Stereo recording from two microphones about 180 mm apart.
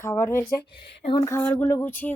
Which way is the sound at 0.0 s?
15° left (ahead or behind).